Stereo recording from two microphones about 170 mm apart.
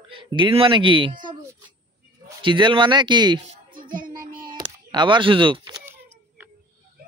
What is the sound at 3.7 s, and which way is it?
Child singing, 55° right (ahead or behind).